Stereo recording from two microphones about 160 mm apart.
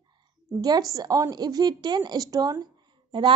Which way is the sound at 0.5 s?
25° right (ahead or behind).